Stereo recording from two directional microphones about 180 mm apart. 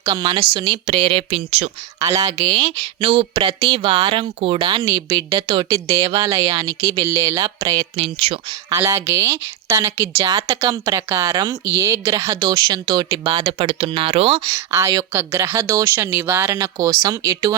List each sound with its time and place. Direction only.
0.0 s speech: 25° right (ahead or behind)
2.0 s speech: 20° right (ahead or behind)
8.0 s speech: 35° right (ahead or behind)
8.7 s speech: 15° right (ahead or behind); by 14.4 s 30° right (ahead or behind)
14.5 s speech: 15° right (ahead or behind)